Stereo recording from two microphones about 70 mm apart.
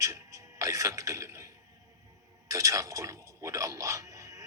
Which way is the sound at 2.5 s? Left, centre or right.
Right.